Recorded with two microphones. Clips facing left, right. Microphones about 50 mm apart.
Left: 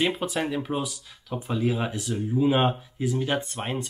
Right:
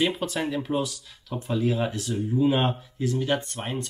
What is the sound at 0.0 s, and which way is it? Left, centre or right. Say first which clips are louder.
Speech: even; centre.